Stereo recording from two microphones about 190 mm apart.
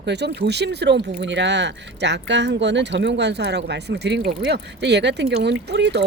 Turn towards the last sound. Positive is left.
turn(degrees=-65)  # may be behind; listen again after turning